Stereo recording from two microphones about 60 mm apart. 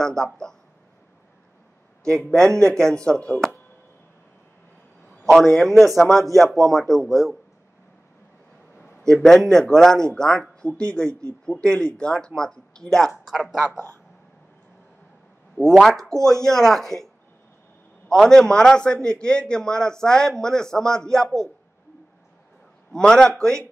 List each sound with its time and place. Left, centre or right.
0.0 s speech: centre
2.0 s a man's voice: centre
3.1 s speech: left
5.3 s a man's voice: centre
8.7 s a sound: left
9.1 s a man's voice: centre
13.2 s speech: centre
15.7 s a man's voice: centre
22.9 s a man's voice: centre